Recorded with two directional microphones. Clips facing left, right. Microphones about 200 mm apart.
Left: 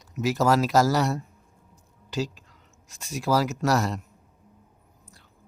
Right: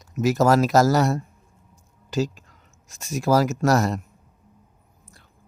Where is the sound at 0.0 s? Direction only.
45° right (ahead or behind).